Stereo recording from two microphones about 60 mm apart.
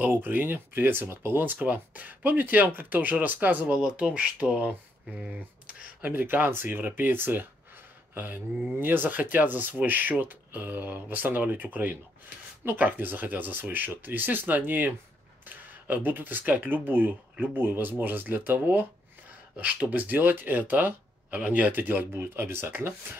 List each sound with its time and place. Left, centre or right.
0.0 s speech: right
3.6 s speech: centre; by 23.1 s right